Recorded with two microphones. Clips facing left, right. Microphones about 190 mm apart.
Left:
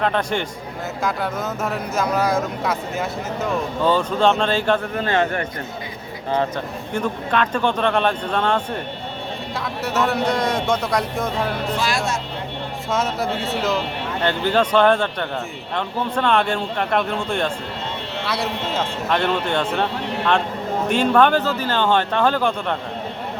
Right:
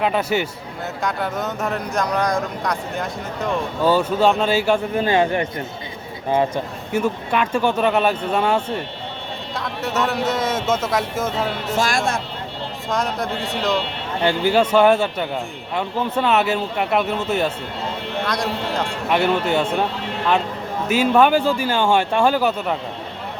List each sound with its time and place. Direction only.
0.0 s speech: 5° right (ahead or behind)
6.9 s speech: 10° right (ahead or behind)
11.8 s speech: 50° right (ahead or behind)
12.9 s speech: 5° left (ahead or behind)
14.2 s speech: 10° right (ahead or behind)
19.1 s speech: 10° right (ahead or behind)
20.8 s speech: 5° right (ahead or behind)